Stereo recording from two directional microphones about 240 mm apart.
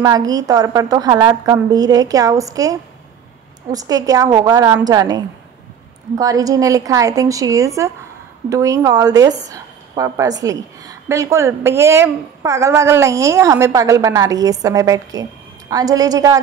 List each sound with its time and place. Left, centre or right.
0.0 s a woman's voice: centre